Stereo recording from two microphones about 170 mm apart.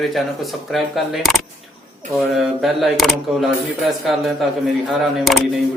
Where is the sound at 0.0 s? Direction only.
Centre (ahead or behind).